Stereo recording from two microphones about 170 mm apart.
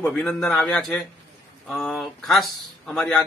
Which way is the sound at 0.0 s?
5° left (ahead or behind).